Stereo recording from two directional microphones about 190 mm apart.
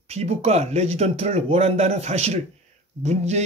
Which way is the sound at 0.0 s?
35° right (ahead or behind).